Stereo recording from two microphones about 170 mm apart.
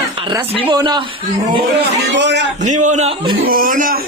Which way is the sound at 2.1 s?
90° right.